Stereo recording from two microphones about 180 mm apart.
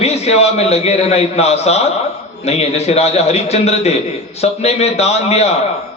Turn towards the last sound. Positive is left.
turn(degrees=35)  # may be behind; listen again after turning